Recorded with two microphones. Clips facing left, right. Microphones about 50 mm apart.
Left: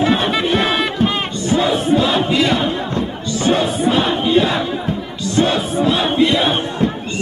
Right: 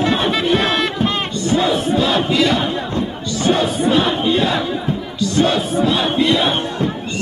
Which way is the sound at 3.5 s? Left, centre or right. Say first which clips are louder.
Even; centre.